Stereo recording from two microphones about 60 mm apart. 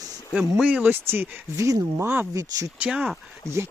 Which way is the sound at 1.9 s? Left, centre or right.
Right.